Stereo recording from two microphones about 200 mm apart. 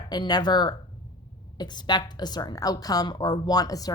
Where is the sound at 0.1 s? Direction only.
20° left (ahead or behind).